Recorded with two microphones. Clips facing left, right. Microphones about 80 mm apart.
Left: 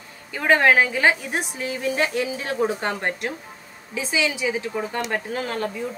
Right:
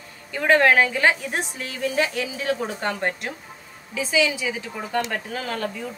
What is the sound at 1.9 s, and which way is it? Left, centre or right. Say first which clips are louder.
A woman's voice: left 2 dB; left.